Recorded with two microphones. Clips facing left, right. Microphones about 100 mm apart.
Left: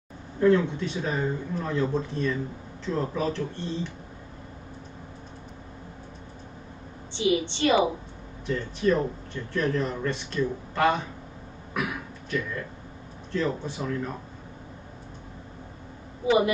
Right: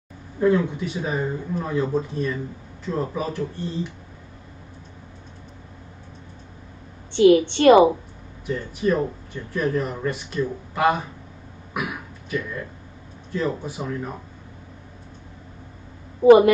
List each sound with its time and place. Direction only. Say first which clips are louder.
0.4 s speech: right 1 dB; 10° right (ahead or behind)
7.2 s a woman's voice: right 10 dB; 60° right (ahead or behind)
8.5 s speech: right 2 dB; 10° right (ahead or behind)
11.7 s throat clearing: right 1 dB; 10° right (ahead or behind)
13.3 s speech: right 2 dB; 10° right (ahead or behind)